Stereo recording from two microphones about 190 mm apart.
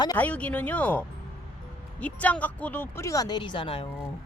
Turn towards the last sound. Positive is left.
turn(degrees=30)  # may be behind; listen again after turning